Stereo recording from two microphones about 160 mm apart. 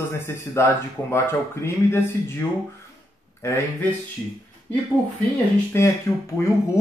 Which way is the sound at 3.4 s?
15° left (ahead or behind).